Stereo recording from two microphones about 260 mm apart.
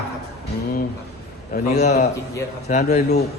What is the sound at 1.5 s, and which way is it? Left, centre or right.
Speech, left.